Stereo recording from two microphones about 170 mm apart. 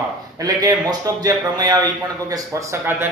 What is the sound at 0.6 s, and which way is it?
A man's voice, 20° right (ahead or behind).